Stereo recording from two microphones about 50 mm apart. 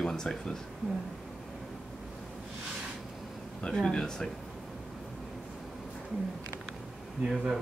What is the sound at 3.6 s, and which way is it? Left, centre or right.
Speech, centre.